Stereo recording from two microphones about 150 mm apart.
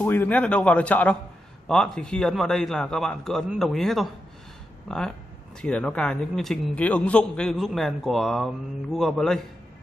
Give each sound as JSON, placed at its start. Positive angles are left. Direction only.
{"t": 0.0, "sound": "a man's voice", "side_deg": 15}